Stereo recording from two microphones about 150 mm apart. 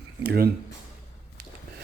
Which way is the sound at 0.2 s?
90° right.